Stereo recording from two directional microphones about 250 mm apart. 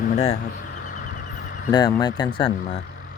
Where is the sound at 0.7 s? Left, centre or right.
Left.